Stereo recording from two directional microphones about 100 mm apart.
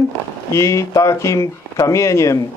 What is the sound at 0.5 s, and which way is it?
A man's voice, 30° left (ahead or behind).